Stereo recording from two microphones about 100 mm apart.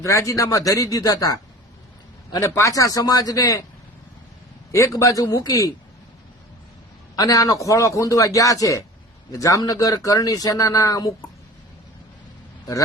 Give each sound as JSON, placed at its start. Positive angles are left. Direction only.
{"t": 0.0, "sound": "speech", "side_deg": 30}
{"t": 2.4, "sound": "speech", "side_deg": 30}
{"t": 4.7, "sound": "speech", "side_deg": 30}
{"t": 7.2, "sound": "speech", "side_deg": 35}